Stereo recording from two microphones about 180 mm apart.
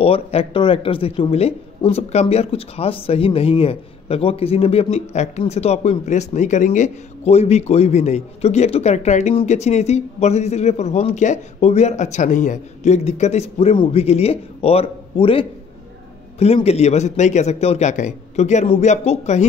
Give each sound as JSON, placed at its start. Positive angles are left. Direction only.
{"t": 0.0, "sound": "speech", "side_deg": 35}